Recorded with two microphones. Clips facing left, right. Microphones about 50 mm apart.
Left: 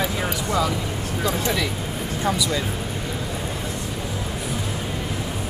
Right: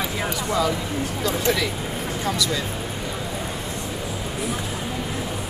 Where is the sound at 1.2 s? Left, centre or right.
Centre.